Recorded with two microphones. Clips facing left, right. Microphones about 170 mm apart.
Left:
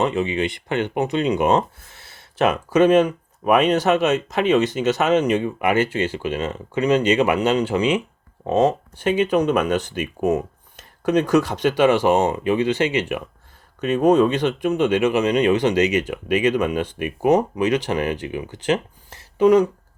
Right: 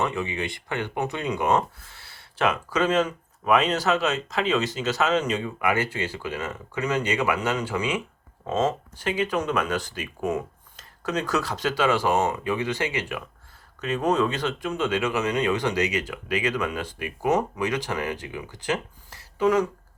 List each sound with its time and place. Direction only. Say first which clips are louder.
0.0 s speech: left 7 dB; 20° left (ahead or behind)
9.0 s speech: left 8 dB; 20° left (ahead or behind)
11.4 s speech: left 7 dB; 20° left (ahead or behind)